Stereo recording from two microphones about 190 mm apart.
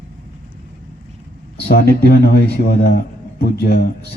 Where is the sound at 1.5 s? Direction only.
55° left (ahead or behind).